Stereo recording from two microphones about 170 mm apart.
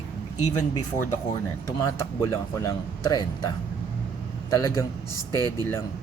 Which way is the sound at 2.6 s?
20° left (ahead or behind).